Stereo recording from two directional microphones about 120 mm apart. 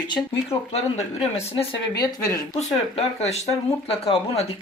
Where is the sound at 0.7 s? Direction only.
60° left (ahead or behind).